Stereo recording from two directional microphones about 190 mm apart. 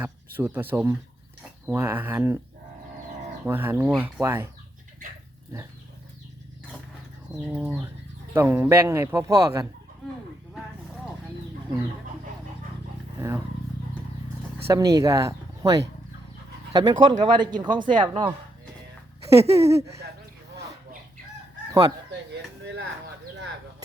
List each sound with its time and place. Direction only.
0.3 s speech: 10° right (ahead or behind)
3.4 s speech: 10° right (ahead or behind)
7.4 s speech: 10° right (ahead or behind)
13.1 s vehicle: 15° right (ahead or behind)
14.7 s speech: 20° right (ahead or behind)
19.5 s speech: 15° right (ahead or behind)